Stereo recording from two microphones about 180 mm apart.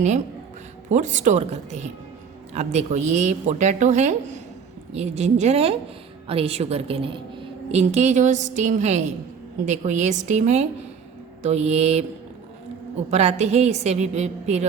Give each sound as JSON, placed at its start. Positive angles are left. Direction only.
{"t": 0.9, "sound": "a woman's voice", "side_deg": -45}
{"t": 13.1, "sound": "speech", "side_deg": -40}